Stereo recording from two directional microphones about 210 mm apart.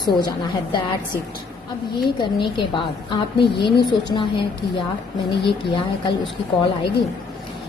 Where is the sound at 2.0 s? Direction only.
20° left (ahead or behind).